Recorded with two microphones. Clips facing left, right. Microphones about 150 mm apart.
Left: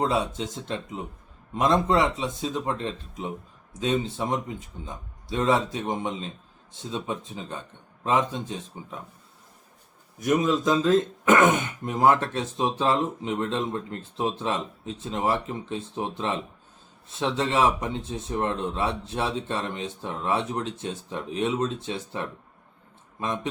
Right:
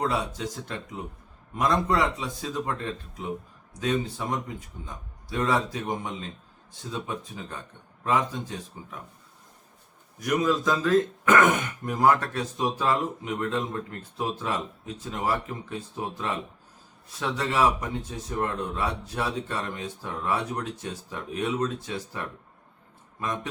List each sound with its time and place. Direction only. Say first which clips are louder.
0.0 s speech: left 3 dB; 25° left (ahead or behind)
10.2 s speech: left 2 dB; 25° left (ahead or behind)